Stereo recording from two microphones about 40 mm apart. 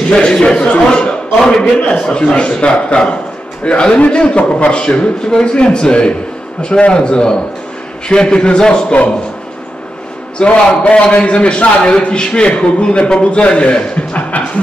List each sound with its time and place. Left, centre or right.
0.1 s a man's voice: centre
10.4 s a man's voice: left